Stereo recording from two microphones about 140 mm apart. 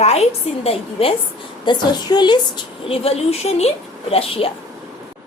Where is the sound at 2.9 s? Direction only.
45° left (ahead or behind).